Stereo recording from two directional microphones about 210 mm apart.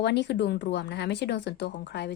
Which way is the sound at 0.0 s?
55° left (ahead or behind).